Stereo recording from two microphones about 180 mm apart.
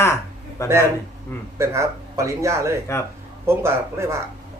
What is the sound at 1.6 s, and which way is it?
Speech, 15° right (ahead or behind).